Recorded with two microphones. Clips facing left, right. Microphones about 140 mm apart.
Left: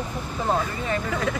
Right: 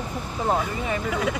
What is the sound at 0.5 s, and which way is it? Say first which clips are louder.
Speech: left 1 dB; 10° right (ahead or behind).